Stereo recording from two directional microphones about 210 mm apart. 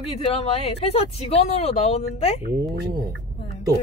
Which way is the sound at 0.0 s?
30° left (ahead or behind).